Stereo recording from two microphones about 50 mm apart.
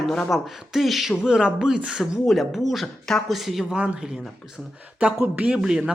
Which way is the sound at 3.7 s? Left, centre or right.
Centre.